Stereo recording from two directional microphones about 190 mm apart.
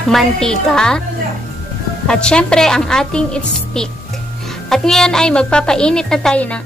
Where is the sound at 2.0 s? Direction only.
5° left (ahead or behind).